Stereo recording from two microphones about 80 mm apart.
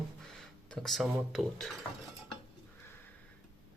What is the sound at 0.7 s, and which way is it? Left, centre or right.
Speech, centre.